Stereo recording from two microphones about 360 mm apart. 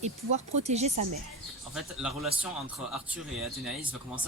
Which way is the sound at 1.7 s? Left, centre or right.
Centre.